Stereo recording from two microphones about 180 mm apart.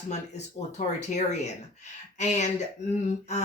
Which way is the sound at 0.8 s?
40° left (ahead or behind).